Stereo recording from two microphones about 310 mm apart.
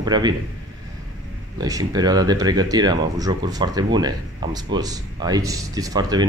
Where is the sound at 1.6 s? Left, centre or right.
Centre.